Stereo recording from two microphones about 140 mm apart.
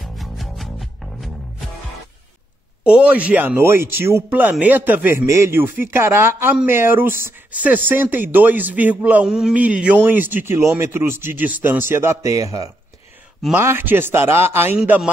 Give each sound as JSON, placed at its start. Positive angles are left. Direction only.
{"t": 0.0, "sound": "music", "side_deg": 0}
{"t": 2.8, "sound": "speech", "side_deg": -10}
{"t": 14.8, "sound": "speech", "side_deg": -5}